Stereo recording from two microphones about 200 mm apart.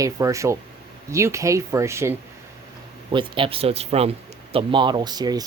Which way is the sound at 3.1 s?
25° right (ahead or behind).